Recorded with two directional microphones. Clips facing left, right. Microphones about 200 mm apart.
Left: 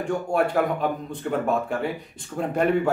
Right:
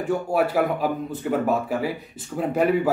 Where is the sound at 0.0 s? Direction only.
5° right (ahead or behind).